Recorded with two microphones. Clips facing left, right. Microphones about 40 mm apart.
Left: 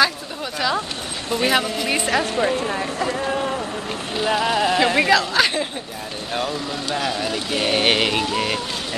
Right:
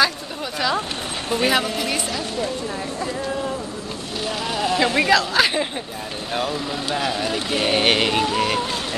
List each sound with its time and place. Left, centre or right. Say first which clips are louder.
0.6 s a sound: even; centre
1.3 s speech: even; centre
2.0 s speech: left 6 dB; left
3.3 s speech: left 2 dB; left
4.4 s speech: left 1 dB; centre
6.9 s speech: even; centre